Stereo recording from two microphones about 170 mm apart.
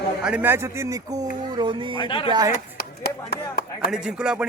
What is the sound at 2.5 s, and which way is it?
Speech, 65° left (ahead or behind).